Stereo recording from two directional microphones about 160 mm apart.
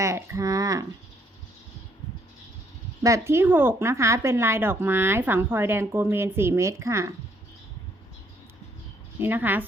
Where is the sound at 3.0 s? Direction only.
15° right (ahead or behind).